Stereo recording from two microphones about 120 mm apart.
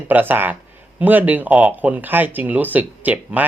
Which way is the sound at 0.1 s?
15° right (ahead or behind).